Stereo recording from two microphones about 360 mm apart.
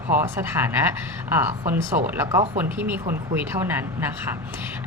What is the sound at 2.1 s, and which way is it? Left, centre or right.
A woman's voice, centre.